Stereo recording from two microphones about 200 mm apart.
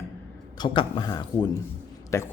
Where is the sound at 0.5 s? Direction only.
25° left (ahead or behind).